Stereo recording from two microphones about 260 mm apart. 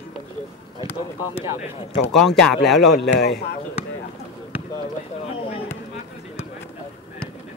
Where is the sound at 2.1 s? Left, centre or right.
Centre.